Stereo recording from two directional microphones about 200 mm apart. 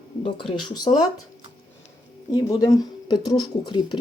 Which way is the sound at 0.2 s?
25° left (ahead or behind).